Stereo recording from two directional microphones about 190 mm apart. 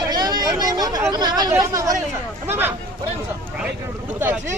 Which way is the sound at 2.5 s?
10° right (ahead or behind).